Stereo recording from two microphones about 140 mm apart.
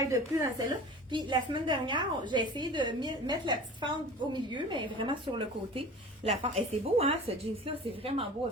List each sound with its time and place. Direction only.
0.0 s a woman's voice: 20° right (ahead or behind)
1.1 s a woman's voice: 35° right (ahead or behind)